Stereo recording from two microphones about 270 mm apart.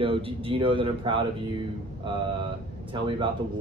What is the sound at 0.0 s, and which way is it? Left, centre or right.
Speech, centre.